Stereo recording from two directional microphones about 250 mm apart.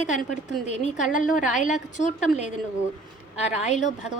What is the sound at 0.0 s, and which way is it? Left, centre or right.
A woman's voice, left.